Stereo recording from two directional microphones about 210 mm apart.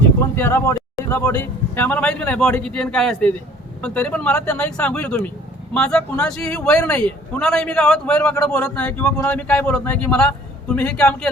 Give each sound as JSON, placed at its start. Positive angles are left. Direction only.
{"t": 0.3, "sound": "a man's voice", "side_deg": 10}